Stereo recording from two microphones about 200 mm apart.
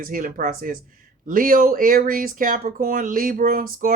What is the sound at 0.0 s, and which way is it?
Speech, 45° right (ahead or behind).